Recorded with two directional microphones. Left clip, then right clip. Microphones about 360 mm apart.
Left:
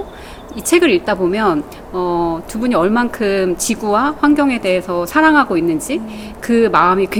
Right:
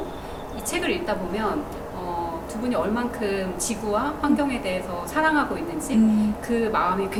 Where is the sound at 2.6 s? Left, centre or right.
Left.